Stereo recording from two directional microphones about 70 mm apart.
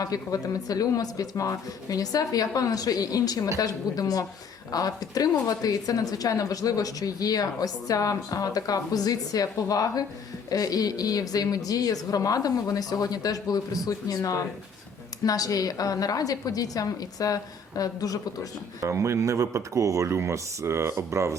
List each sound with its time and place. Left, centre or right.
0.0 s speech: left
18.8 s speech: right